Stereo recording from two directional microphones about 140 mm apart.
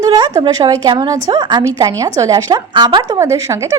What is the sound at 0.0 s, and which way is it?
A woman's voice, 25° right (ahead or behind).